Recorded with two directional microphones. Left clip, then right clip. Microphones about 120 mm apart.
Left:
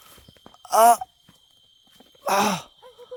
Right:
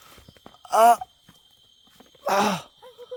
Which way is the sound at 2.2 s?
20° left (ahead or behind).